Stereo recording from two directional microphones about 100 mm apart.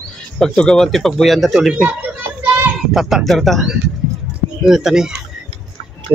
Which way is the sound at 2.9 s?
Centre (ahead or behind).